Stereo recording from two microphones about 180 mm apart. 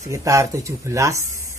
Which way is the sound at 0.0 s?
15° right (ahead or behind).